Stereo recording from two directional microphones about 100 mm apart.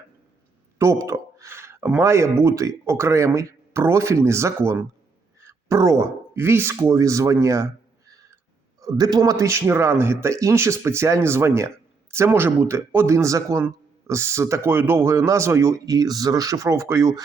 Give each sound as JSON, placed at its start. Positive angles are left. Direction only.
{"t": 0.8, "sound": "a sound", "side_deg": -30}
{"t": 2.0, "sound": "speech", "side_deg": -30}
{"t": 8.8, "sound": "a man's voice", "side_deg": -35}